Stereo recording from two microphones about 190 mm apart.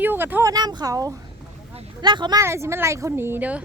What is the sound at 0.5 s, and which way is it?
Speech, 20° right (ahead or behind).